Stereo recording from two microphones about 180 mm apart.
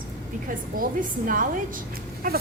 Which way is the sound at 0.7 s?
50° right (ahead or behind).